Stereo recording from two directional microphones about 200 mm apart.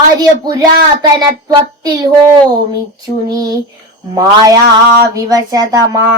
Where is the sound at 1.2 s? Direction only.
20° right (ahead or behind).